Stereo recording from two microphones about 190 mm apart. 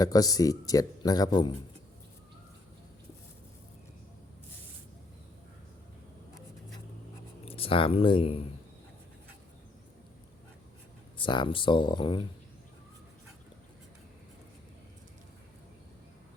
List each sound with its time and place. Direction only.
0.0 s speech: 20° left (ahead or behind)
7.4 s speech: 30° left (ahead or behind)
11.2 s speech: 25° left (ahead or behind)